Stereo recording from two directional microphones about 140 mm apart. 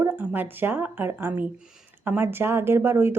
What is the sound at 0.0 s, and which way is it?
Speech, 15° right (ahead or behind).